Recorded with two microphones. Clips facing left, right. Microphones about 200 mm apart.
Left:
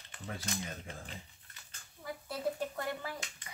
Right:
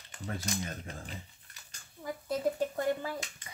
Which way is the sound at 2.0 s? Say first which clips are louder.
Right 5 dB; 45° right (ahead or behind).